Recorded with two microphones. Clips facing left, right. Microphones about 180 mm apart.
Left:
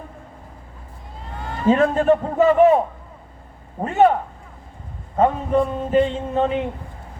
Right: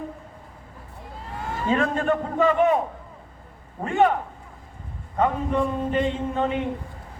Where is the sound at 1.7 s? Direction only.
30° left (ahead or behind).